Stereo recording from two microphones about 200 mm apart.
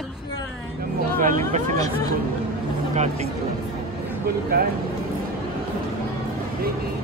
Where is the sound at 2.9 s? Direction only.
35° right (ahead or behind).